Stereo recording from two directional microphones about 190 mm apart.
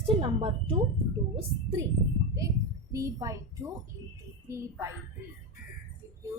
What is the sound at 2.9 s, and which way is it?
Speech, 15° right (ahead or behind).